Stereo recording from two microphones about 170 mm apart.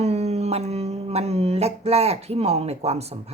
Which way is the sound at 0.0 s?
40° right (ahead or behind).